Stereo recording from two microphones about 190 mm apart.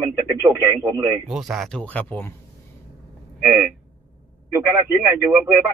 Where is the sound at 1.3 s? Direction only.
Centre (ahead or behind).